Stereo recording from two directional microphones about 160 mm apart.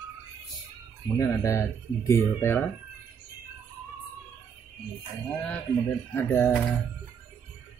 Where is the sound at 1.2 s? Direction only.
20° left (ahead or behind).